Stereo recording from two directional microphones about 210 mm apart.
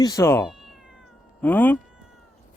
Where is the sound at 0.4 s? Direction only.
Centre (ahead or behind).